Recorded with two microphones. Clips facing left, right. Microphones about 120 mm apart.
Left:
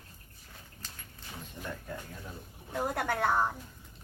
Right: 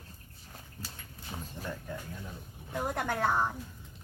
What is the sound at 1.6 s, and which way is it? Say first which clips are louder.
Speech: even; 40° right (ahead or behind).